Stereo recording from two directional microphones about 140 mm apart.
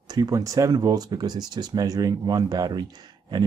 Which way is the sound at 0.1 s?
25° right (ahead or behind).